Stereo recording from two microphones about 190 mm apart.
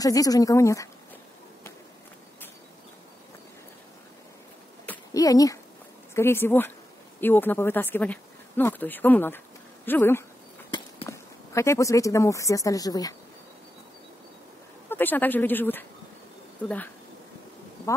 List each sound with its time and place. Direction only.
0.0 s speech: 20° left (ahead or behind)
4.8 s a sound: 20° left (ahead or behind)
6.1 s speech: 10° left (ahead or behind)
14.9 s speech: 10° left (ahead or behind)